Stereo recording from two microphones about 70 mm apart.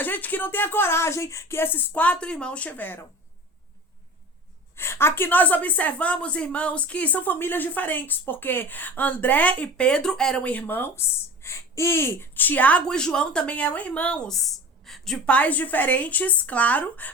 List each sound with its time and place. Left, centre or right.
0.0 s a woman's voice: left
4.8 s a woman's voice: left
11.4 s speech: left
12.8 s a woman's voice: centre
14.3 s a sound: centre
15.3 s a woman's voice: left